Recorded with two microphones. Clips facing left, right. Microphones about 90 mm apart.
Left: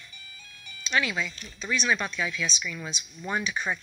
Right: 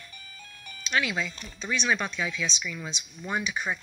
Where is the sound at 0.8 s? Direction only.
15° right (ahead or behind).